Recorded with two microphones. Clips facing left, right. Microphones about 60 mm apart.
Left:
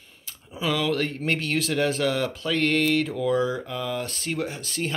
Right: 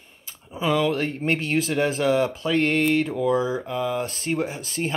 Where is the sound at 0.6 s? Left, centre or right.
Right.